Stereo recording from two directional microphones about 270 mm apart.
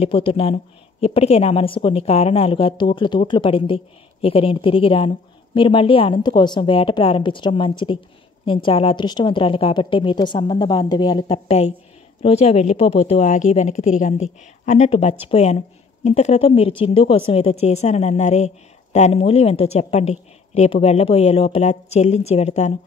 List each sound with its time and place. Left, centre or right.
0.0 s a woman's voice: centre